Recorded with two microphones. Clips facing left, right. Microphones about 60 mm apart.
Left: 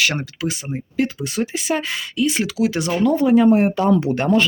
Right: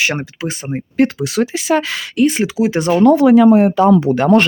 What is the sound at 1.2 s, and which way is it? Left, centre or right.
Speech, right.